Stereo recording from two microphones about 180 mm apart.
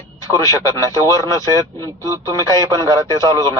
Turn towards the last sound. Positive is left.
turn(degrees=15)  # may be behind; listen again after turning